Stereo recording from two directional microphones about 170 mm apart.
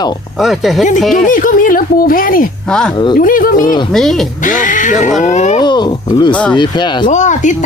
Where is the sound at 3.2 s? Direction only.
55° left (ahead or behind).